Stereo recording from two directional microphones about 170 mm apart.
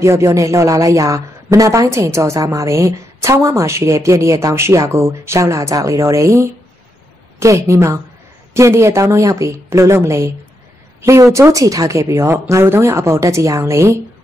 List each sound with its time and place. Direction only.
0.0 s speech: 15° right (ahead or behind)